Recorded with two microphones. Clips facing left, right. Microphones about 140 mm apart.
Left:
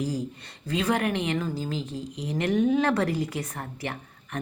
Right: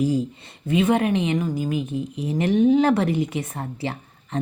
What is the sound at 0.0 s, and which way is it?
Speech, 25° right (ahead or behind).